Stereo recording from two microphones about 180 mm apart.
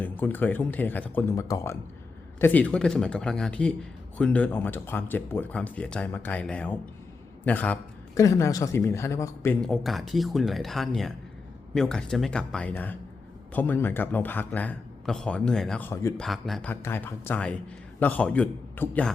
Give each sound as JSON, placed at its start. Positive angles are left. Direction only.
{"t": 0.0, "sound": "speech", "side_deg": 10}
{"t": 9.6, "sound": "speech", "side_deg": 0}
{"t": 16.2, "sound": "speech", "side_deg": 0}